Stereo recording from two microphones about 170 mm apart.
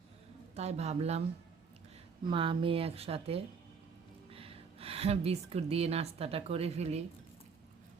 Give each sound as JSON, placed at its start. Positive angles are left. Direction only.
{"t": 0.5, "sound": "a woman's voice", "side_deg": -40}
{"t": 2.2, "sound": "a woman's voice", "side_deg": -30}